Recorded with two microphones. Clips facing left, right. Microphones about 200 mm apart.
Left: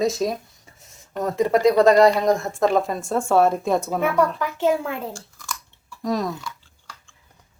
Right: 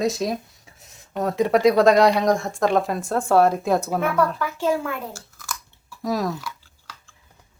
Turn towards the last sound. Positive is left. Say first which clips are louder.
# even
turn(degrees=-5)  # may be behind; listen again after turning